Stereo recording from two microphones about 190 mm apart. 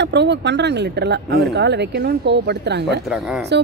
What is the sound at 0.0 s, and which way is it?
A woman's voice, 65° right (ahead or behind).